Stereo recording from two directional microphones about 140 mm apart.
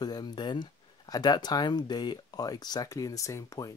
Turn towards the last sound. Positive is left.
turn(degrees=25)  # may be behind; listen again after turning